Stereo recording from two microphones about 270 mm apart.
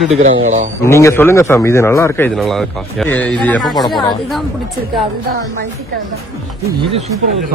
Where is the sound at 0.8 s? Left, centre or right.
Centre.